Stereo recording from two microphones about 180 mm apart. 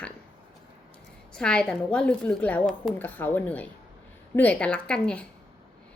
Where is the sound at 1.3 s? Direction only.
5° left (ahead or behind).